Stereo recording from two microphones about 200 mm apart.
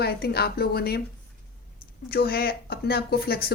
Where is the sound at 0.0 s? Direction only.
50° left (ahead or behind).